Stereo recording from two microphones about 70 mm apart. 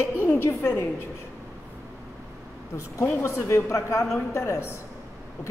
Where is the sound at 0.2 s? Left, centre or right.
Left.